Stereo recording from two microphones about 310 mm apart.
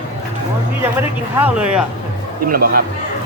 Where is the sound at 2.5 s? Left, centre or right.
Right.